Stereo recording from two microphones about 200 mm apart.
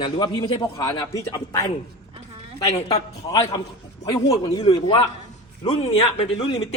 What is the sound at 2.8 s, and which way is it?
Speech, 30° left (ahead or behind).